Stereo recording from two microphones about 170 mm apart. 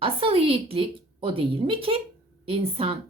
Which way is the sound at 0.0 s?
30° right (ahead or behind).